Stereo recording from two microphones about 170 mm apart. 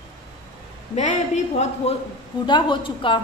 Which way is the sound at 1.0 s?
40° left (ahead or behind).